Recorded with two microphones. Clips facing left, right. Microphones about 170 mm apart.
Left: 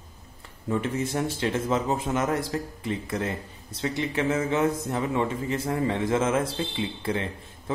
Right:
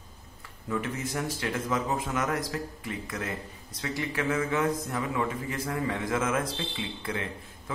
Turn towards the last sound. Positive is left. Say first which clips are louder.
# left 4 dB
turn(degrees=30)  # may be behind; listen again after turning